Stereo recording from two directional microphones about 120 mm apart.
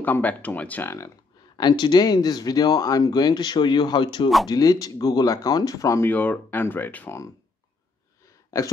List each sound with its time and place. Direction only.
0.0 s speech: 15° left (ahead or behind)
1.6 s speech: 40° left (ahead or behind)
6.1 s speech: 10° left (ahead or behind)
8.5 s speech: 25° left (ahead or behind)